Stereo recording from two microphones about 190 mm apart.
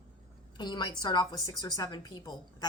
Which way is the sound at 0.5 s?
20° left (ahead or behind).